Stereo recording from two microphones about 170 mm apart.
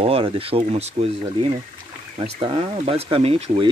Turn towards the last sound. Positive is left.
turn(degrees=-35)  # may be behind; listen again after turning